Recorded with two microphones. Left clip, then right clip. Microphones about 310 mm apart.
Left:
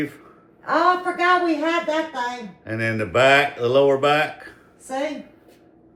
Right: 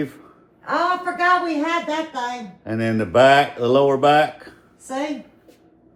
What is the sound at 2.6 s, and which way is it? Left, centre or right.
Speech, centre.